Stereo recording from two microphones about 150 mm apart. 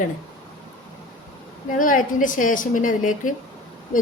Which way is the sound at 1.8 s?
60° left (ahead or behind).